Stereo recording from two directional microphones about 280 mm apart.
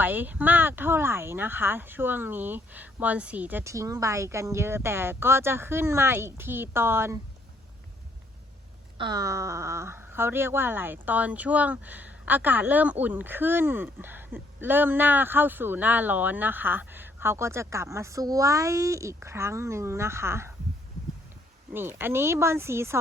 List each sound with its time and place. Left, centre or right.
0.0 s speech: centre
9.0 s speech: centre
21.7 s speech: centre